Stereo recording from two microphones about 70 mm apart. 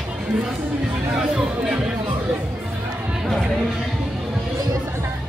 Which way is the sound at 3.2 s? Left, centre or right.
Centre.